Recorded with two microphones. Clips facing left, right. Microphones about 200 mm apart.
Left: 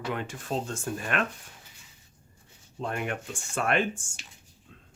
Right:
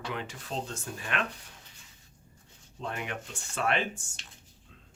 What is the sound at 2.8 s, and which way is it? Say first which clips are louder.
Speech: left 5 dB; 50° left (ahead or behind).